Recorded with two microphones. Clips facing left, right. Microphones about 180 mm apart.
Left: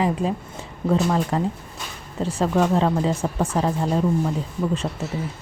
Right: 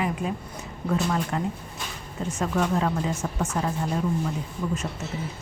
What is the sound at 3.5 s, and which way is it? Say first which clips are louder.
Speech: left 5 dB; 35° left (ahead or behind).